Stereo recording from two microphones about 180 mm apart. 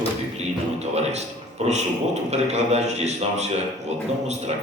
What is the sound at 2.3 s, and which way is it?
A man's voice, 40° right (ahead or behind).